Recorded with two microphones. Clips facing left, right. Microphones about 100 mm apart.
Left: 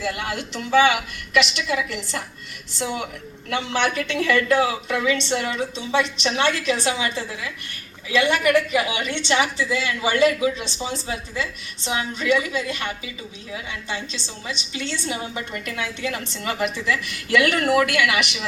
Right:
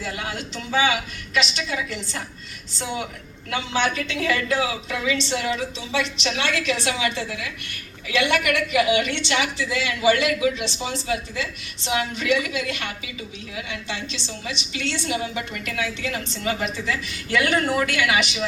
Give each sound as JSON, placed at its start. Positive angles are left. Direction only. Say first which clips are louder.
{"t": 0.0, "sound": "a woman's voice", "louder": "left 3 dB", "side_deg": 70}
{"t": 8.2, "sound": "a woman's voice", "louder": "left 3 dB", "side_deg": 35}